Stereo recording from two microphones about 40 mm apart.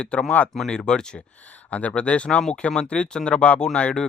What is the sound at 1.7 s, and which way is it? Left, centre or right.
Speech, left.